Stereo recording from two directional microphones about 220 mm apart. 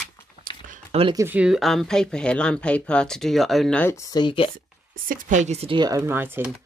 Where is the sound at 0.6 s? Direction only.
30° right (ahead or behind).